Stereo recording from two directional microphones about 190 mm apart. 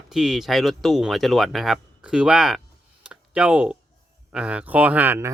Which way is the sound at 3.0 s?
5° right (ahead or behind).